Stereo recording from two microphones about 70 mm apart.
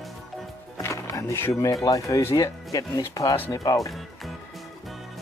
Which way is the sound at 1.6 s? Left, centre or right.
Left.